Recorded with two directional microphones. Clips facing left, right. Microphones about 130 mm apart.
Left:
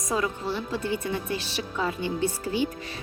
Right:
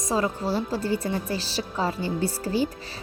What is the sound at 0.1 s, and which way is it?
Speech, 35° right (ahead or behind).